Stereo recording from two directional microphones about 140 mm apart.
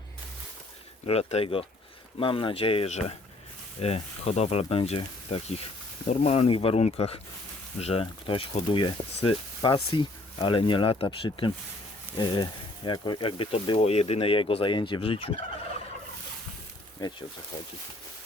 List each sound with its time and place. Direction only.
1.0 s speech: 45° left (ahead or behind)
6.1 s speech: 55° left (ahead or behind)
17.0 s speech: 30° left (ahead or behind)